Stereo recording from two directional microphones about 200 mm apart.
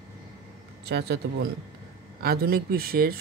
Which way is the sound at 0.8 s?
55° right (ahead or behind).